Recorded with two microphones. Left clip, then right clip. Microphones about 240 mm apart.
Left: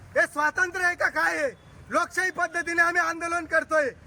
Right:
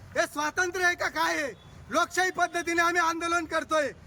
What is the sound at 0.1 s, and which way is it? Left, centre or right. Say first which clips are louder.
A man's voice: left 5 dB; centre.